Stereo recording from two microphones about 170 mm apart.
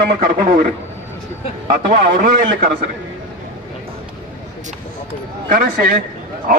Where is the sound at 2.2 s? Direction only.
50° right (ahead or behind).